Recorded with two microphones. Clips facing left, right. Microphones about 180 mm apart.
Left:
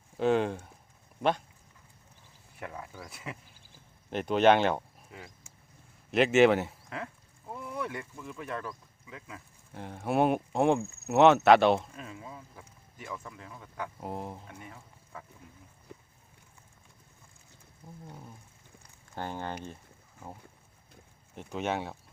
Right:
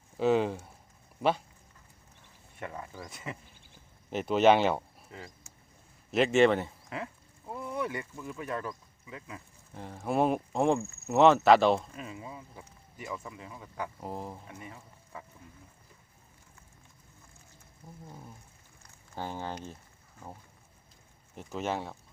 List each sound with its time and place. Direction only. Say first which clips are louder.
0.2 s speech: even; 5° right (ahead or behind)
2.6 s speech: right 1 dB; centre (ahead or behind)
15.9 s a sound: left 11 dB; 70° left (ahead or behind)
19.1 s speech: even; 5° right (ahead or behind)
21.3 s speech: left 1 dB; centre (ahead or behind)